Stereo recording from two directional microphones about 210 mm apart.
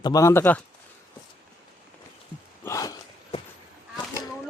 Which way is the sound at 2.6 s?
15° left (ahead or behind).